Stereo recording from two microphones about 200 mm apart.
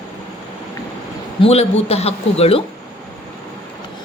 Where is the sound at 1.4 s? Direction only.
30° left (ahead or behind).